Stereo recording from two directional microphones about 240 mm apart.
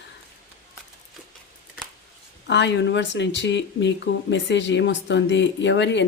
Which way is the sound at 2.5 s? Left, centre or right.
Left.